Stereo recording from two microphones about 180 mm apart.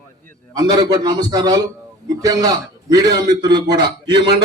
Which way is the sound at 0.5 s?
20° right (ahead or behind).